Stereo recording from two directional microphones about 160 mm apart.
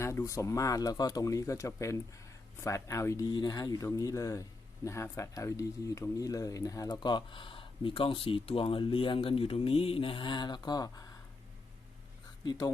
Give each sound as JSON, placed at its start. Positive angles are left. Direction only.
{"t": 0.0, "sound": "speech", "side_deg": 20}
{"t": 12.5, "sound": "speech", "side_deg": 25}